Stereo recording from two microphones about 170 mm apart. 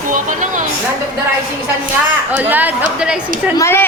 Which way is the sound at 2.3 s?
10° right (ahead or behind).